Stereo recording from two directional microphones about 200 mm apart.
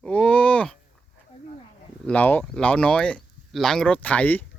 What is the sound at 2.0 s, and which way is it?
Speech, 5° left (ahead or behind).